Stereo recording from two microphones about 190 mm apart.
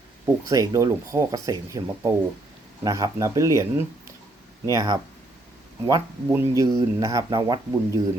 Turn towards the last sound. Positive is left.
turn(degrees=-15)  # may be behind; listen again after turning